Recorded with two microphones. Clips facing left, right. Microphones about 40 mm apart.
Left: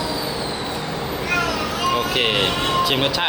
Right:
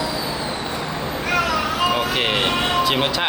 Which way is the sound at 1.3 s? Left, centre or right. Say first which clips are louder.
Right 2 dB; right.